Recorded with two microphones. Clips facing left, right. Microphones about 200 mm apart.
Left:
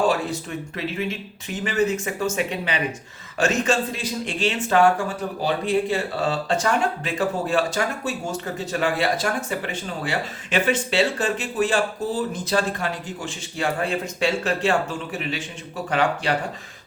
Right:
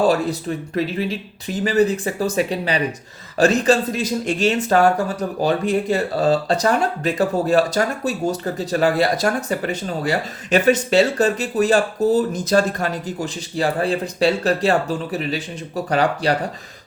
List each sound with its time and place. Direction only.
0.1 s speech: 40° right (ahead or behind)